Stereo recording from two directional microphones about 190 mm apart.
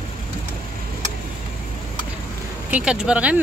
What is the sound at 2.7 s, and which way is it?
Speech, 5° right (ahead or behind).